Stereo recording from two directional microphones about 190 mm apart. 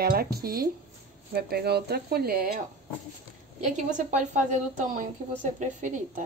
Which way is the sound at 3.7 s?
40° right (ahead or behind).